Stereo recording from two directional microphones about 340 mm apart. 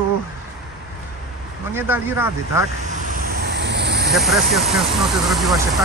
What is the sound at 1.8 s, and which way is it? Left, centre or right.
Speech, centre.